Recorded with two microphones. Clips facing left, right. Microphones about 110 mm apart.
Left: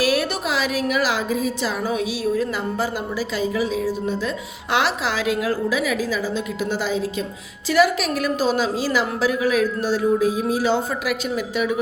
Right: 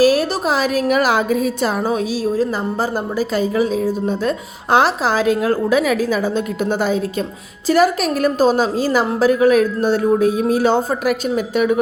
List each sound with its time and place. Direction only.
0.0 s a woman's voice: 40° right (ahead or behind)